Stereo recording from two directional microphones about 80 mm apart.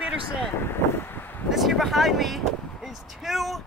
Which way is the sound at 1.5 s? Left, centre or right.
Centre.